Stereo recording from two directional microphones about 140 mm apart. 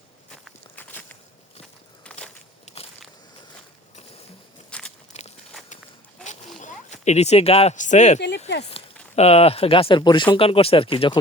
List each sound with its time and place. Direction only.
0.8 s walk: 15° left (ahead or behind)
2.0 s walk: 5° left (ahead or behind)
4.7 s walk: 5° left (ahead or behind)
5.1 s walk: 55° left (ahead or behind)
6.6 s speech: 60° left (ahead or behind); by 11.2 s 40° left (ahead or behind)